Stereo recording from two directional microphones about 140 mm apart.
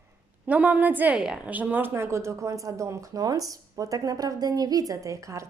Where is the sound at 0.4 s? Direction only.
10° right (ahead or behind).